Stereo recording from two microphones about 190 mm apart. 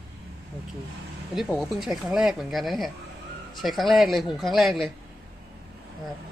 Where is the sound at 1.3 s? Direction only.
Centre (ahead or behind).